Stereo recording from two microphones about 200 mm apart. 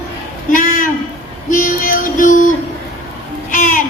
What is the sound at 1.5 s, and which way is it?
Music, 45° left (ahead or behind).